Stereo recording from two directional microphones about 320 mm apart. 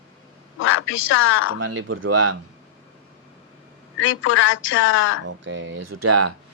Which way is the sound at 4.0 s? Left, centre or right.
Left.